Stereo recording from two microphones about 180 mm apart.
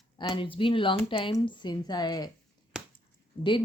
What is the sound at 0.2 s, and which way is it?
Speech, 30° left (ahead or behind).